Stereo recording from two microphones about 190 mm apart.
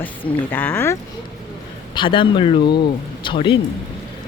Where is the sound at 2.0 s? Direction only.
25° left (ahead or behind).